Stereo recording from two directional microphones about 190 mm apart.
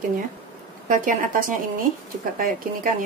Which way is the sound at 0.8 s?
45° right (ahead or behind).